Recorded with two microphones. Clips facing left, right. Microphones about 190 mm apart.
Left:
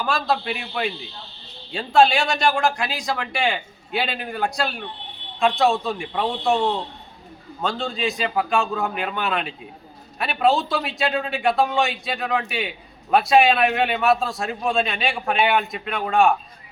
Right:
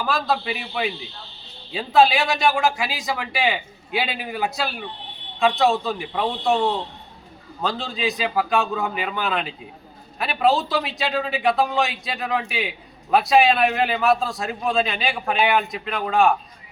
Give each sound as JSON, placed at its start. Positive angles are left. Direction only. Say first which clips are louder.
{"t": 0.0, "sound": "a man's voice", "louder": "even", "side_deg": 0}